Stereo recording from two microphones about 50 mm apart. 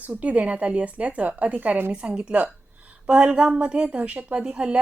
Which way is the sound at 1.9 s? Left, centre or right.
Right.